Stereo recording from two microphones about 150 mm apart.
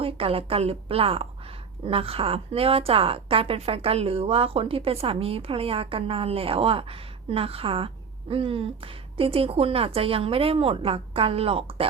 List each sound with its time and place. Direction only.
0.0 s a woman's voice: 40° right (ahead or behind)